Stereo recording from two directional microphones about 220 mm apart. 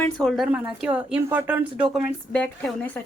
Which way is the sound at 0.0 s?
Centre (ahead or behind).